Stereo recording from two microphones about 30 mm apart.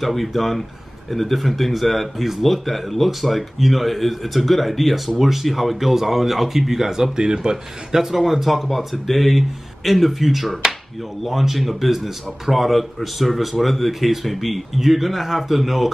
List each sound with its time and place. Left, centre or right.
0.0 s speech: centre
7.2 s speech: right
7.9 s speech: centre